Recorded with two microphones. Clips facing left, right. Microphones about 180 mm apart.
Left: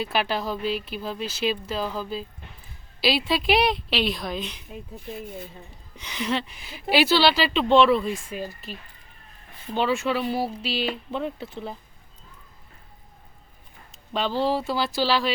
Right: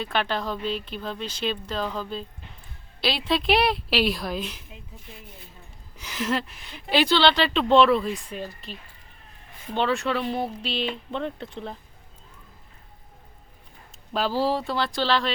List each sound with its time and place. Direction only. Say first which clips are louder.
0.0 s speech: left 1 dB; 5° left (ahead or behind)
6.0 s speech: even; 5° right (ahead or behind)
13.9 s speech: right 1 dB; centre (ahead or behind)